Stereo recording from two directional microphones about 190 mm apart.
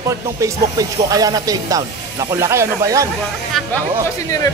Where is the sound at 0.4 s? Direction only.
20° right (ahead or behind).